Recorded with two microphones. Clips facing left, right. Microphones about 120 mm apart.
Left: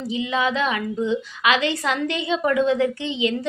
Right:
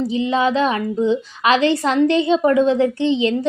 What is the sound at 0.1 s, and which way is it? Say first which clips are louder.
A woman's voice: right 1 dB; 35° right (ahead or behind).